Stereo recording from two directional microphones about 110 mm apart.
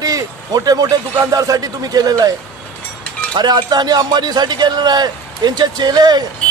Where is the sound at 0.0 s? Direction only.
35° right (ahead or behind).